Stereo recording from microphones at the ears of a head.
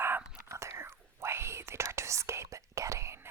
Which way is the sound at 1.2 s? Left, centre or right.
Right.